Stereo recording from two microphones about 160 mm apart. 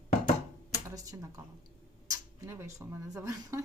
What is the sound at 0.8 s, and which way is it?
Speech, 20° right (ahead or behind).